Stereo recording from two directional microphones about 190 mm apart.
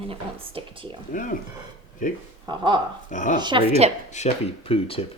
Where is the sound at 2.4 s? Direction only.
25° right (ahead or behind).